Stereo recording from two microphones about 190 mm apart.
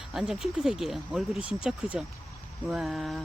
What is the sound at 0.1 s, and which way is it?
Speech, centre (ahead or behind).